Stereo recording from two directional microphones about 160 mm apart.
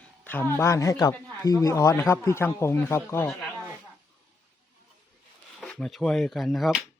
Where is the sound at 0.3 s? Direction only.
15° left (ahead or behind).